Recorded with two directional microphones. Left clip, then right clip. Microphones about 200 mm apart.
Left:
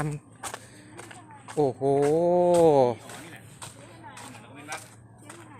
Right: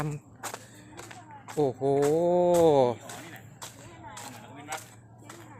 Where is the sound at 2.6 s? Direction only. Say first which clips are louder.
Left 2 dB; 10° left (ahead or behind).